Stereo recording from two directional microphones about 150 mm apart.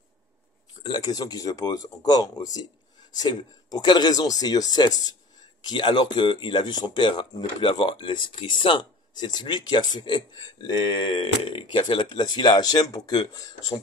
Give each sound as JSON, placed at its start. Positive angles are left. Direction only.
{"t": 0.8, "sound": "speech", "side_deg": 30}